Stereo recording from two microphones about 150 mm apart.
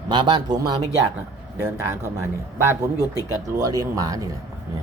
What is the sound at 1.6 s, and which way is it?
Speech, 15° right (ahead or behind).